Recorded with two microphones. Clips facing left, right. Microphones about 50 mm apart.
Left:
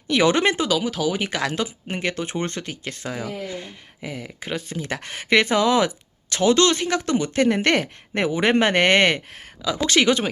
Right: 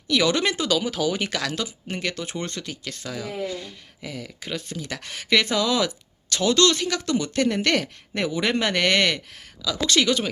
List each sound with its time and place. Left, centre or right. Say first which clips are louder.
0.1 s speech: left 3 dB; left
0.7 s speech: left 1 dB; centre
1.3 s speech: left 3 dB; left